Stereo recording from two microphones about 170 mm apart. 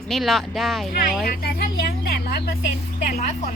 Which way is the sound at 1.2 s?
60° left (ahead or behind).